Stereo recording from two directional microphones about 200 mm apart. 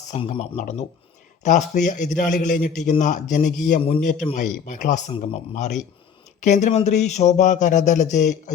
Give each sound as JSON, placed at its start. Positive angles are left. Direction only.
{"t": 0.1, "sound": "a man's voice", "side_deg": 30}